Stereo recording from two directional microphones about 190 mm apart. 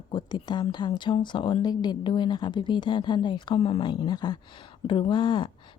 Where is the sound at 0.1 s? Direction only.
25° left (ahead or behind).